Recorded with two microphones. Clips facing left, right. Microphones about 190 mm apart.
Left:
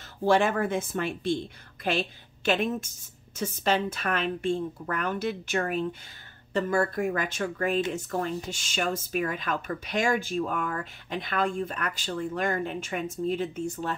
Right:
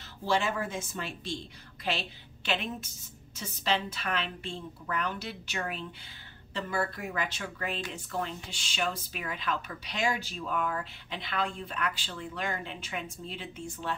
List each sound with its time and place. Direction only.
0.2 s speech: 55° left (ahead or behind)